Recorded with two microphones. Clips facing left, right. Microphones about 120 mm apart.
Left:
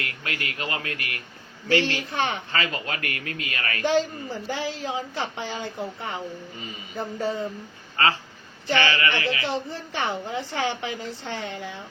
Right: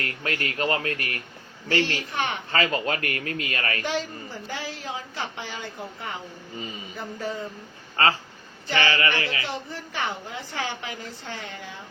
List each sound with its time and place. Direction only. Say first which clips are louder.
0.0 s speech: right 3 dB; 40° right (ahead or behind)
1.9 s a woman's voice: left 2 dB; 30° left (ahead or behind)
2.5 s speech: right 4 dB; 35° right (ahead or behind)
4.4 s a woman's voice: left 5 dB; 25° left (ahead or behind)
8.0 s speech: right 1 dB; 30° right (ahead or behind)
8.6 s speech: left 2 dB; 25° left (ahead or behind)
8.9 s speech: even; 25° right (ahead or behind)
9.4 s a woman's voice: left 4 dB; 25° left (ahead or behind)